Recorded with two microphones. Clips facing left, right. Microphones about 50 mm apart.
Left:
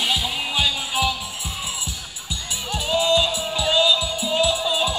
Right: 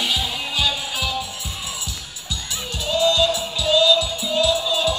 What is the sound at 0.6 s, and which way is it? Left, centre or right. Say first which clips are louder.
Music: left 1 dB; left.